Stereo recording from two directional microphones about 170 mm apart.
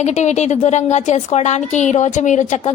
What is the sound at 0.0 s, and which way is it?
A woman's voice, 40° left (ahead or behind).